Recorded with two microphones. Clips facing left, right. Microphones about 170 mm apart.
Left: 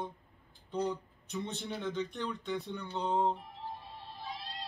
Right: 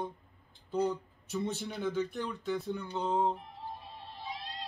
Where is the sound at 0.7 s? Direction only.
5° right (ahead or behind).